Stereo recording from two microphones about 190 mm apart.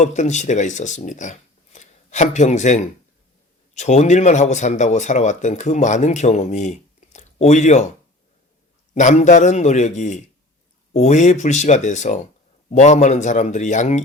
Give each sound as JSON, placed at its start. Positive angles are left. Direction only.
{"t": 0.0, "sound": "speech", "side_deg": 40}
{"t": 9.0, "sound": "speech", "side_deg": 40}